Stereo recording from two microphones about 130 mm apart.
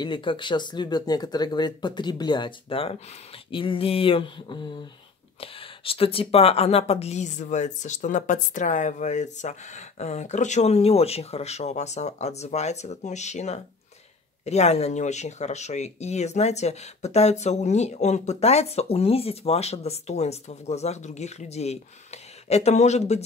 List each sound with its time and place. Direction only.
0.0 s speech: 40° left (ahead or behind); by 23.2 s 60° left (ahead or behind)